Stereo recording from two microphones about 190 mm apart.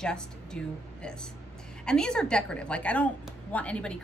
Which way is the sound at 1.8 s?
5° left (ahead or behind).